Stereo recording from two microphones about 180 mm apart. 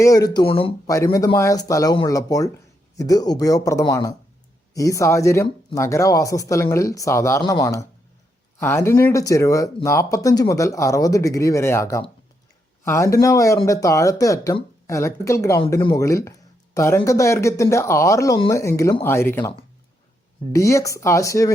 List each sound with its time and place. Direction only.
0.0 s speech: 20° left (ahead or behind)
0.9 s speech: 20° left (ahead or behind)